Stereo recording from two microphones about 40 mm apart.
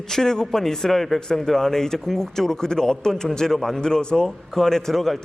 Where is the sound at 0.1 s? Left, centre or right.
Centre.